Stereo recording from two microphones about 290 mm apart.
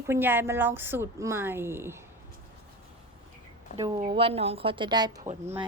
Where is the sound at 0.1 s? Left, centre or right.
Centre.